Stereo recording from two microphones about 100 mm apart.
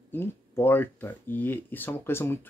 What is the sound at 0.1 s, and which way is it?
Speech, 20° left (ahead or behind).